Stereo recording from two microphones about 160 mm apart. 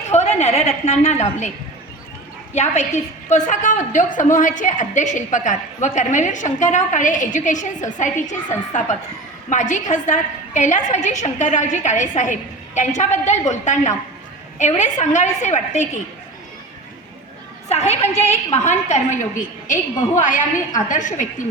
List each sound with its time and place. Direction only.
0.1 s a woman's voice: 45° left (ahead or behind)
2.6 s a woman's voice: 45° left (ahead or behind)
17.7 s a woman's voice: 45° left (ahead or behind)